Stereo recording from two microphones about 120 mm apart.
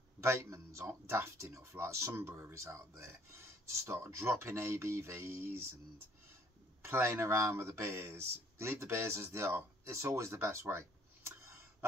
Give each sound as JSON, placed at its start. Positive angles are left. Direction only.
{"t": 0.2, "sound": "speech", "side_deg": -20}
{"t": 6.8, "sound": "speech", "side_deg": -20}